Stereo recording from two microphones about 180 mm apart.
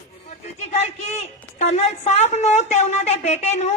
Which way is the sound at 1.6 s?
40° left (ahead or behind).